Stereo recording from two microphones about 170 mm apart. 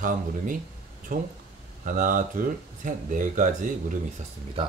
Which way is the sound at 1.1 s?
50° right (ahead or behind).